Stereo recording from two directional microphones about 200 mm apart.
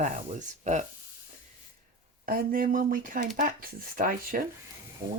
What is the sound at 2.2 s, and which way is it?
Speech, 45° right (ahead or behind).